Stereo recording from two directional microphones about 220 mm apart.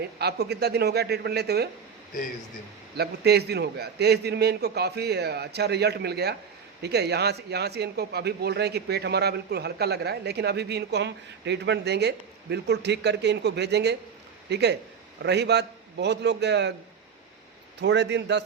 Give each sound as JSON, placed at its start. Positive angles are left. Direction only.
{"t": 0.2, "sound": "a man's voice", "side_deg": -50}
{"t": 3.0, "sound": "a man's voice", "side_deg": -50}
{"t": 17.7, "sound": "a man's voice", "side_deg": -50}